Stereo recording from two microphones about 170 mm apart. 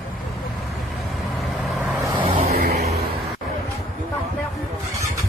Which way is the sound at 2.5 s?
65° right (ahead or behind).